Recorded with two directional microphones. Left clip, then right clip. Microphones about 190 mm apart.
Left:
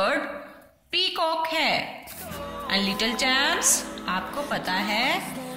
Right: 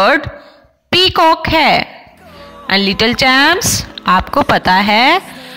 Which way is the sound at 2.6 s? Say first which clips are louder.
Right 13 dB; 45° right (ahead or behind).